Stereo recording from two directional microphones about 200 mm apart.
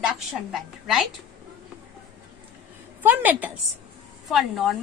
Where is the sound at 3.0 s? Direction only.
10° right (ahead or behind).